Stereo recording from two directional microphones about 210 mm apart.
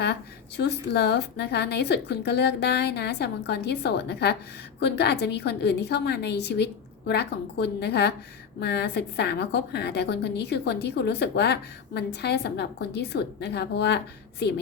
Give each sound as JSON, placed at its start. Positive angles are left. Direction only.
{"t": 0.0, "sound": "a woman's voice", "side_deg": 50}